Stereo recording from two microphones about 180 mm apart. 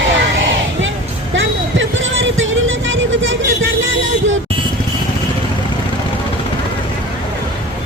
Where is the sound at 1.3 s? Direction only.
90° right.